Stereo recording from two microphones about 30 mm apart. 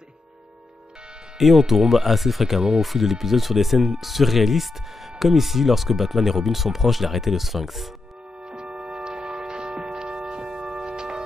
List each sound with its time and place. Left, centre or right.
1.4 s speech: centre
8.5 s music: right